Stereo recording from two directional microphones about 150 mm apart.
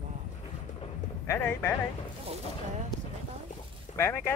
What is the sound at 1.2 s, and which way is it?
Speech, 15° left (ahead or behind).